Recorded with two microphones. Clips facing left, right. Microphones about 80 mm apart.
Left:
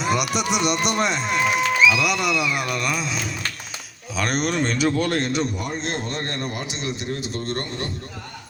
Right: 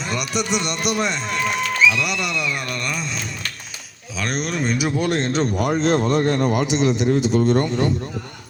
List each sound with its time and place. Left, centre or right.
0.0 s speech: centre
5.5 s a man's voice: right